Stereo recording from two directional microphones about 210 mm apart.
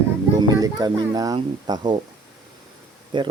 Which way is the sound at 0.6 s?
20° right (ahead or behind).